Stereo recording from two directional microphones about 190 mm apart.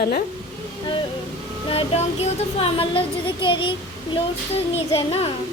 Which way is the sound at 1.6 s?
30° left (ahead or behind).